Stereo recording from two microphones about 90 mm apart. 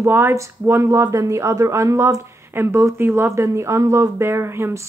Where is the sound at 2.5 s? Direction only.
25° right (ahead or behind).